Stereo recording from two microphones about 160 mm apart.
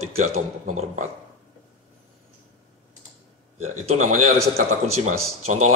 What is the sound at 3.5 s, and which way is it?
Speech, 50° right (ahead or behind).